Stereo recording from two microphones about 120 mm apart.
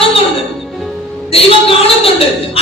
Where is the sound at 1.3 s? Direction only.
50° left (ahead or behind).